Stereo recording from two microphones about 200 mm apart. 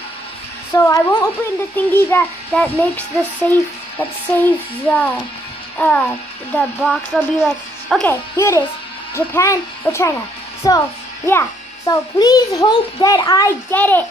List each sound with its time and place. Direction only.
0.7 s a child's voice: 15° left (ahead or behind); by 8.1 s centre (ahead or behind)
8.1 s a child's voice: 15° left (ahead or behind)